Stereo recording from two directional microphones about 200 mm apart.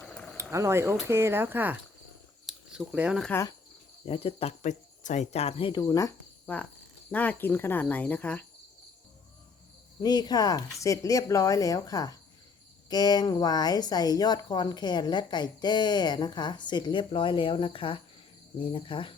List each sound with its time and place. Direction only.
0.0 s a sound: 5° left (ahead or behind)
0.3 s speech: 15° right (ahead or behind)
2.5 s a sound: 5° right (ahead or behind)
3.2 s speech: 10° left (ahead or behind)
4.0 s speech: 30° left (ahead or behind); by 8.4 s 5° left (ahead or behind)
10.0 s speech: 20° left (ahead or behind)